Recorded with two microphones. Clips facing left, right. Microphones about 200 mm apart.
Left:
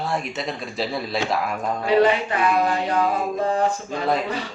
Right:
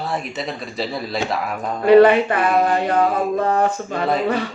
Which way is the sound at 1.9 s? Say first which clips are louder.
Right 8 dB; 55° right (ahead or behind).